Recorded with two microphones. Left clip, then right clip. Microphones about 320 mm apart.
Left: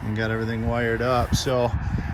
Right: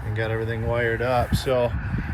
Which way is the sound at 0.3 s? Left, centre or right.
Left.